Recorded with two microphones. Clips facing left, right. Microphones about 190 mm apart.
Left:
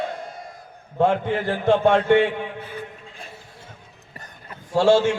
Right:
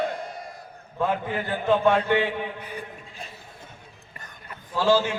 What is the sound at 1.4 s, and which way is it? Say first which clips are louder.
Speech: left 2 dB; 80° left.